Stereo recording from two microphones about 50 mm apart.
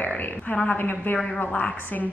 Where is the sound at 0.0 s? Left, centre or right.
Left.